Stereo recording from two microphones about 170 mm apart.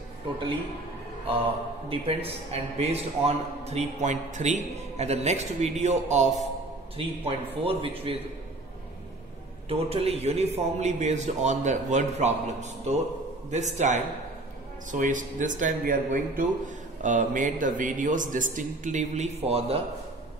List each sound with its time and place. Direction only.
1.9 s a man's voice: 35° right (ahead or behind)
9.7 s a man's voice: 35° right (ahead or behind)